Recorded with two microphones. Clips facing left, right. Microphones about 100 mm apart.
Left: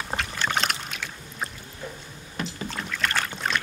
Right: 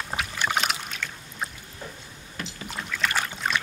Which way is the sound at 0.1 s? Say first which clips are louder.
Even; 10° right (ahead or behind).